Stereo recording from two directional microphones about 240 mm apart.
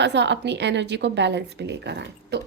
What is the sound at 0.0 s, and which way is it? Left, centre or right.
A woman's voice, right.